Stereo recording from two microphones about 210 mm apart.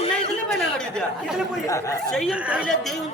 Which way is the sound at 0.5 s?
Centre (ahead or behind).